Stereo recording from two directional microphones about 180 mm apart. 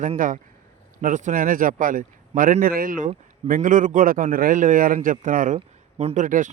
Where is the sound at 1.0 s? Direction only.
45° right (ahead or behind).